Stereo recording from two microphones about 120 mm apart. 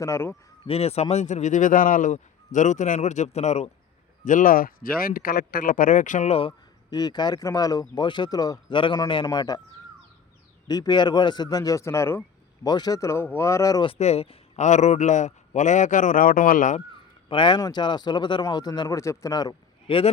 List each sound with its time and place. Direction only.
0.0 s speech: 20° left (ahead or behind)
0.7 s a man's voice: 60° left (ahead or behind)
1.1 s a man's voice: 75° left (ahead or behind)
4.2 s speech: 90° left
5.7 s speech: 90° left; by 6.5 s 60° left (ahead or behind)
6.9 s speech: 35° left (ahead or behind)
8.7 s a man's voice: 45° left (ahead or behind)
10.7 s speech: 35° left (ahead or behind)
12.6 s speech: 35° left (ahead or behind)
14.0 s a man's voice: 60° left (ahead or behind); by 16.8 s 90° left
16.9 s speech: 45° left (ahead or behind)
19.9 s a man's voice: 45° left (ahead or behind)